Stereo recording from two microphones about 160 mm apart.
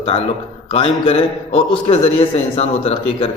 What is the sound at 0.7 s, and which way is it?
A man's voice, 35° left (ahead or behind).